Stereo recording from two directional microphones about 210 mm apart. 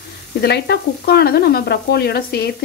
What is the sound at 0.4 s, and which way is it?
Frying, 50° left (ahead or behind).